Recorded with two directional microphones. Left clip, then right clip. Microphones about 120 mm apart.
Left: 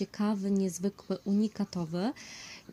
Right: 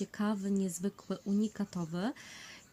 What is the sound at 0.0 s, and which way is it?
Speech, 25° left (ahead or behind).